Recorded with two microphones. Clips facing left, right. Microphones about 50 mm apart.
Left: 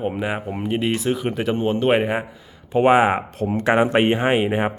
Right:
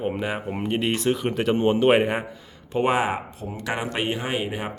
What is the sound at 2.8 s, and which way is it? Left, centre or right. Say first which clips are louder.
Speech: left 7 dB; left.